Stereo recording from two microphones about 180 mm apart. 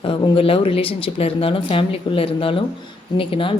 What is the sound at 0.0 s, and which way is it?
Speech, 30° left (ahead or behind).